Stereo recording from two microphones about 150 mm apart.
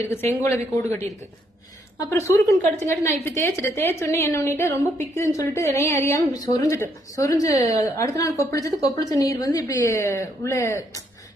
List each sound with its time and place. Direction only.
0.1 s a woman's voice: 15° left (ahead or behind)